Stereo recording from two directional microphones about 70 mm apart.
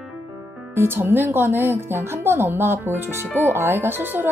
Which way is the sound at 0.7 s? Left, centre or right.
Right.